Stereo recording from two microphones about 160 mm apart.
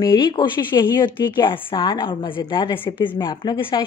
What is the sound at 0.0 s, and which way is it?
A woman's voice, 30° left (ahead or behind).